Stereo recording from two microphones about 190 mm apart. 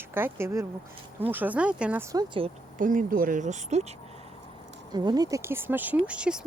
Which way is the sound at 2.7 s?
45° right (ahead or behind).